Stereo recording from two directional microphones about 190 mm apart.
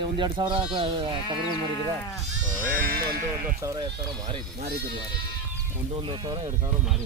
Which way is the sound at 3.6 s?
20° right (ahead or behind).